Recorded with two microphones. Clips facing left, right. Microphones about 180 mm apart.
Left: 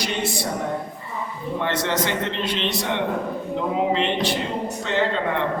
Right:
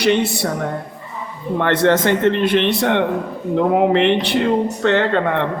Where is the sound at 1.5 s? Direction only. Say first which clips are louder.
Right 9 dB; 60° right (ahead or behind).